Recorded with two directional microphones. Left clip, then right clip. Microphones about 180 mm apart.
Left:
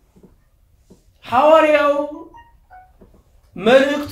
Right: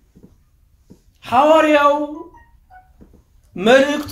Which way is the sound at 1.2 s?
45° right (ahead or behind).